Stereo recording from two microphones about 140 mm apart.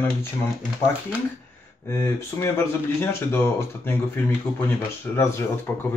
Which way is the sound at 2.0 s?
20° left (ahead or behind).